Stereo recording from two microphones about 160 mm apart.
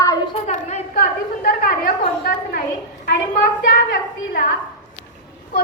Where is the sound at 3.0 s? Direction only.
60° left (ahead or behind).